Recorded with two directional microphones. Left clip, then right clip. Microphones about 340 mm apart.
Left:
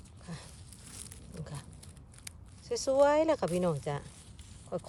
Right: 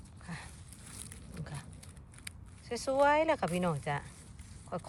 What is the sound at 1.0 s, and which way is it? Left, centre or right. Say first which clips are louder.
Roaring cats: left 1 dB; centre.